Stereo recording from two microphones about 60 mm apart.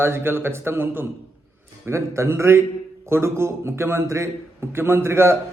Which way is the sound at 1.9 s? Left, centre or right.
Right.